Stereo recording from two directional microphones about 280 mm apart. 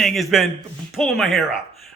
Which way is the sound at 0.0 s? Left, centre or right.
Centre.